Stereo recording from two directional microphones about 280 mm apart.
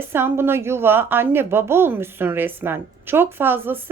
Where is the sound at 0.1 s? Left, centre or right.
Centre.